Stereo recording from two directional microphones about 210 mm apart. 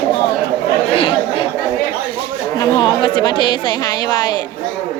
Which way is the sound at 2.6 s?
20° left (ahead or behind).